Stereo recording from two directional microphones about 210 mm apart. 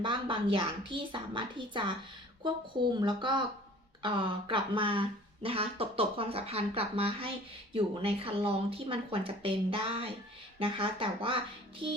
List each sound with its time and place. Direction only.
0.0 s speech: 25° right (ahead or behind)